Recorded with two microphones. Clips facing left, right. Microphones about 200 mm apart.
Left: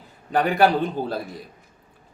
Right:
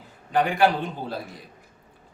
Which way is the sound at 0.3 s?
40° left (ahead or behind).